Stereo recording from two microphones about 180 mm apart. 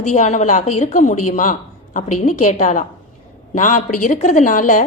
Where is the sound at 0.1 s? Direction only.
40° left (ahead or behind).